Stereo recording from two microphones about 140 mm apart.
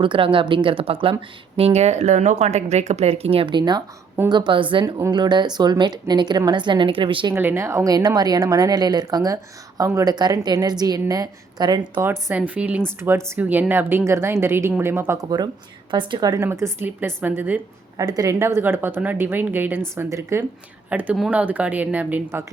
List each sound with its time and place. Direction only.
0.0 s a woman's voice: 35° right (ahead or behind)
7.3 s speech: 20° right (ahead or behind)
12.3 s a woman's voice: 10° right (ahead or behind)
18.0 s speech: 25° right (ahead or behind)